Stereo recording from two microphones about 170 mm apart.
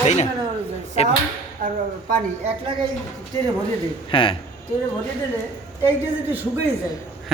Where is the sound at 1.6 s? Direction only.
50° right (ahead or behind).